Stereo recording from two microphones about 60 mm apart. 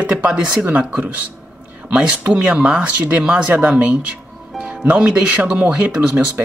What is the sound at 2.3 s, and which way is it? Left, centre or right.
Speech, centre.